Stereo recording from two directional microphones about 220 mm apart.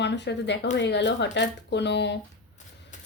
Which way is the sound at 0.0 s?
50° left (ahead or behind).